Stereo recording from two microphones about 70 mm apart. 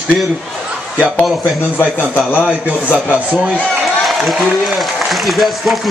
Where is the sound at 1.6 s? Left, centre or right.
Left.